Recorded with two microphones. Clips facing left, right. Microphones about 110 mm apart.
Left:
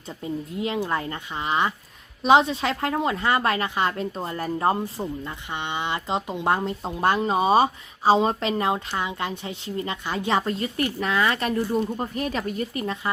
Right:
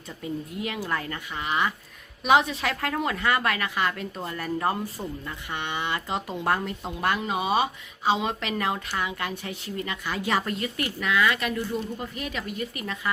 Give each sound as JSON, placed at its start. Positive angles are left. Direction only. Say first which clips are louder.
{"t": 0.2, "sound": "a woman's voice", "louder": "left 3 dB", "side_deg": 25}